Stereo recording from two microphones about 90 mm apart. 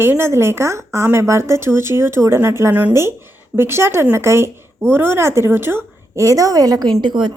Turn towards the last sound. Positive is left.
turn(degrees=-60)  # may be behind; listen again after turning